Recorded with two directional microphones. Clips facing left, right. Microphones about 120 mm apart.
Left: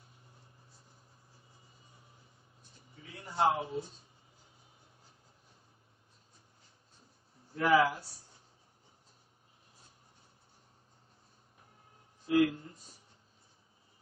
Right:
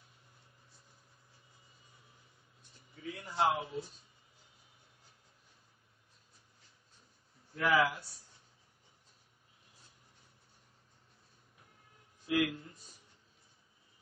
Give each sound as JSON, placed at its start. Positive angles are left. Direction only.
{"t": 3.0, "sound": "a sound", "side_deg": 30}
{"t": 7.5, "sound": "speech", "side_deg": 30}
{"t": 12.3, "sound": "speech", "side_deg": 30}